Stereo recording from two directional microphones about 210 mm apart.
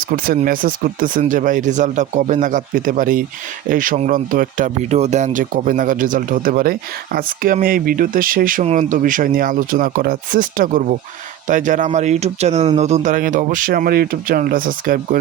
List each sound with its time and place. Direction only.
0.3 s speech: 40° right (ahead or behind)